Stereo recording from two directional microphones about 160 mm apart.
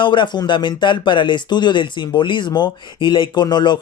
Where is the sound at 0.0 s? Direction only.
30° left (ahead or behind).